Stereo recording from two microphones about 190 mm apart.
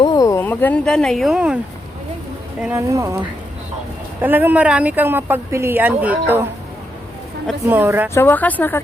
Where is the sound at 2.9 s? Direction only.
15° right (ahead or behind).